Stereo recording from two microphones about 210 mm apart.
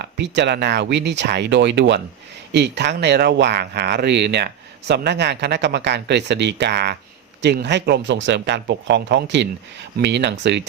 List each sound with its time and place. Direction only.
0.0 s speech: 55° right (ahead or behind)